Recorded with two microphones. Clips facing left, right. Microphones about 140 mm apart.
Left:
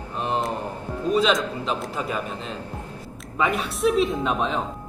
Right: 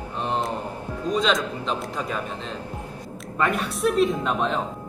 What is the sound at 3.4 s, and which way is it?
Speech, centre (ahead or behind).